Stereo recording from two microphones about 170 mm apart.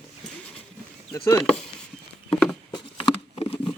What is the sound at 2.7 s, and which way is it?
Patter, 25° left (ahead or behind).